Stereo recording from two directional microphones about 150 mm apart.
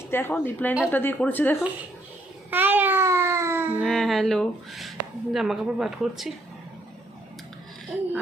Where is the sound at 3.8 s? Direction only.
Centre (ahead or behind).